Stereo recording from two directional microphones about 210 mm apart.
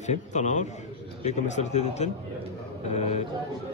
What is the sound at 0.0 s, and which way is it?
A man's voice, 35° left (ahead or behind).